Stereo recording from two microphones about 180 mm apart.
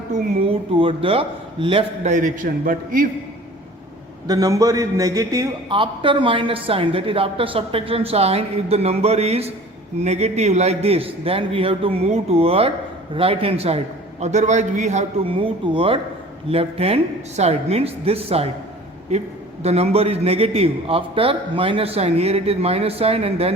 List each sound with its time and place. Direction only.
0.1 s a man's voice: 30° right (ahead or behind)
2.0 s a man's voice: 45° right (ahead or behind)
4.3 s a man's voice: 20° right (ahead or behind)
19.6 s a man's voice: 35° right (ahead or behind)